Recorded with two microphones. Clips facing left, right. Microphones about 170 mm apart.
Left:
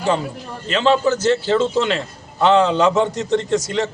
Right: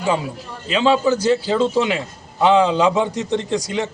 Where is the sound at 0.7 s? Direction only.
10° right (ahead or behind).